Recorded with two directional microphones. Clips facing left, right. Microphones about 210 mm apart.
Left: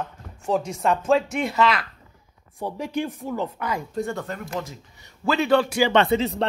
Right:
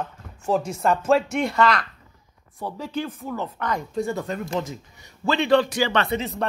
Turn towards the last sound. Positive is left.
turn(degrees=30)  # may be behind; listen again after turning